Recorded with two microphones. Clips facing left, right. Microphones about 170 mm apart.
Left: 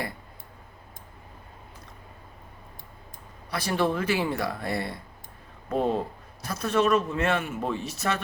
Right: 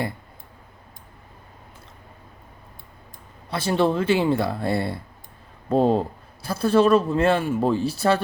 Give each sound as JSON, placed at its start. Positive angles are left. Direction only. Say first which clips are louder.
{"t": 3.5, "sound": "speech", "louder": "right 5 dB", "side_deg": -25}